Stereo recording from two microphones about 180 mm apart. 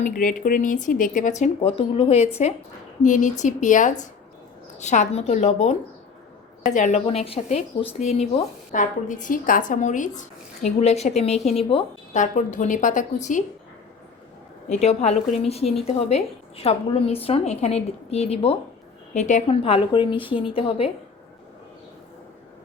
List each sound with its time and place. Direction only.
0.0 s a woman's voice: 50° left (ahead or behind)
14.7 s a woman's voice: 35° left (ahead or behind)